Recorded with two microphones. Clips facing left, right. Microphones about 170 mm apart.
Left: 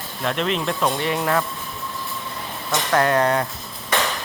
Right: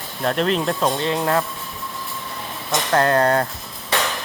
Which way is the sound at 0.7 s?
30° right (ahead or behind).